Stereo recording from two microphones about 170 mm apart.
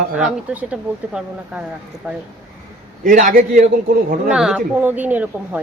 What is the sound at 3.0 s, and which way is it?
Speech, 55° right (ahead or behind).